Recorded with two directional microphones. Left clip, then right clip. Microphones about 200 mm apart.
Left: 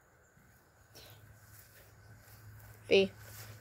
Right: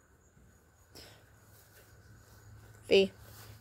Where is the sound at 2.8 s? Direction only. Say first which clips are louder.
Right 2 dB; 15° right (ahead or behind).